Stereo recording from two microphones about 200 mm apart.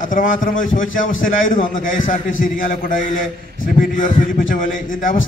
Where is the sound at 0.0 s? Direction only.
45° left (ahead or behind).